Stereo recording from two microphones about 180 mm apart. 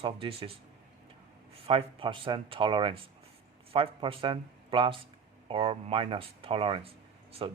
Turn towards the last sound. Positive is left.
turn(degrees=-30)  # may be behind; listen again after turning